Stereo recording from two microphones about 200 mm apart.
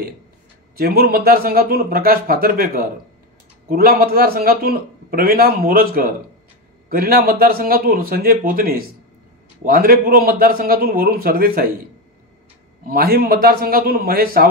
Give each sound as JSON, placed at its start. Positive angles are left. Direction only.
{"t": 0.7, "sound": "a man's voice", "side_deg": -50}
{"t": 12.8, "sound": "a man's voice", "side_deg": -50}